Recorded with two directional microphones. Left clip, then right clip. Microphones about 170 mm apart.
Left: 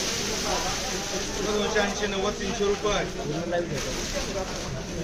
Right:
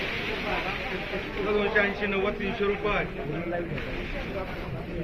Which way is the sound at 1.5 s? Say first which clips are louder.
Right 1 dB; 30° left (ahead or behind).